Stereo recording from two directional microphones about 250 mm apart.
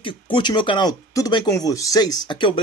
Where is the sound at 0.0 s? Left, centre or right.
Centre.